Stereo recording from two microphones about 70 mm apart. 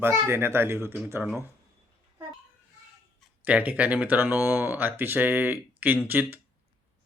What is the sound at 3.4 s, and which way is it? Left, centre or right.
Speech, right.